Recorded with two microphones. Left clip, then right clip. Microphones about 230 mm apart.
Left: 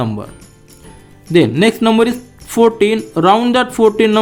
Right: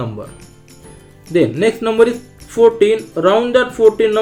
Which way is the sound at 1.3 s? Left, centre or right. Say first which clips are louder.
Left 2 dB; left.